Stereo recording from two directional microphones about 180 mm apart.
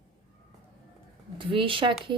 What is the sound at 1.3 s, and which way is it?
Speech, 30° right (ahead or behind).